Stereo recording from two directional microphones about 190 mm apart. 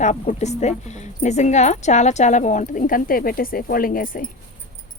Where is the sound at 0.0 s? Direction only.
40° left (ahead or behind).